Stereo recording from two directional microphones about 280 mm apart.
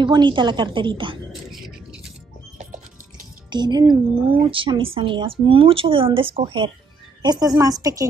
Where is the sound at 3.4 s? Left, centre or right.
Centre.